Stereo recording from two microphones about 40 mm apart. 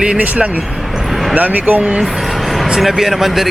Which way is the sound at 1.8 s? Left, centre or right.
Right.